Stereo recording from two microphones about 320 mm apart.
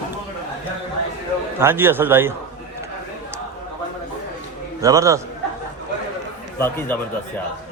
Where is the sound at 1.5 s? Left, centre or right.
Centre.